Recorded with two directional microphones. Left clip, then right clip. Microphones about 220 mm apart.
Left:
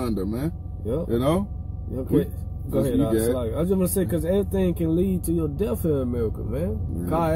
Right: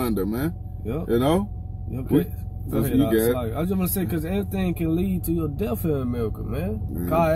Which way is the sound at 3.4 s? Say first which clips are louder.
Left 3 dB; 20° left (ahead or behind).